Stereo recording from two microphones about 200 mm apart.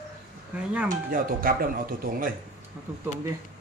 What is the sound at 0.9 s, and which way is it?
Speech, 45° right (ahead or behind).